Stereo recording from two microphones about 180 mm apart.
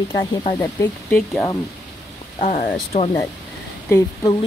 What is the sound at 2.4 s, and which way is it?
Speech, 50° left (ahead or behind).